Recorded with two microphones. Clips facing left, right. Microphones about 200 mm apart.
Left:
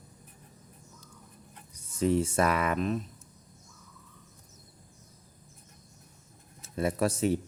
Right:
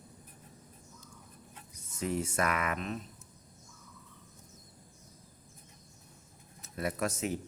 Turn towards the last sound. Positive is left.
turn(degrees=30)  # may be behind; listen again after turning